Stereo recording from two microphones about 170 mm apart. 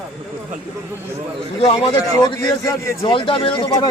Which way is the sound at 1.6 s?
35° left (ahead or behind).